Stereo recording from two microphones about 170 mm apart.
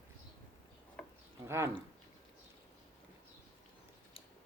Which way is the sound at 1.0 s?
5° left (ahead or behind).